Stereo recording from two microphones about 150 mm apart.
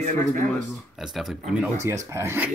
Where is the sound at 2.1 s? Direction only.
15° right (ahead or behind).